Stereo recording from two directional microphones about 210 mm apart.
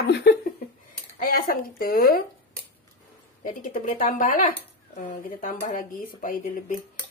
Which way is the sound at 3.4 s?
40° left (ahead or behind).